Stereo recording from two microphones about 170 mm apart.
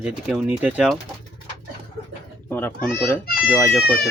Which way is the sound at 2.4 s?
10° left (ahead or behind).